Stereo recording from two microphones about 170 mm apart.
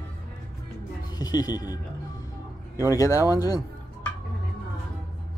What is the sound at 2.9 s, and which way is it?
Speech, 20° left (ahead or behind).